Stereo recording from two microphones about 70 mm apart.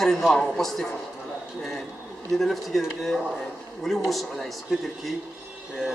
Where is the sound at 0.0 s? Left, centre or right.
Centre.